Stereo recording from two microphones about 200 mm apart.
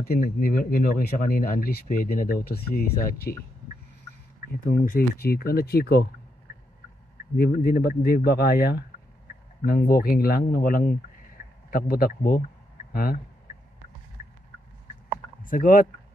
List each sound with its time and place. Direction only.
0.0 s speech: 45° left (ahead or behind)
4.6 s speech: 45° left (ahead or behind)
7.3 s speech: 50° left (ahead or behind)
15.4 s speech: 45° left (ahead or behind)